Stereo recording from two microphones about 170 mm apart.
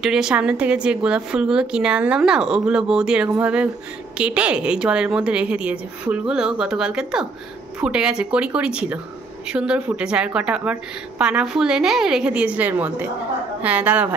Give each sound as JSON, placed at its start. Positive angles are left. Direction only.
{"t": 0.0, "sound": "a woman's voice", "side_deg": -5}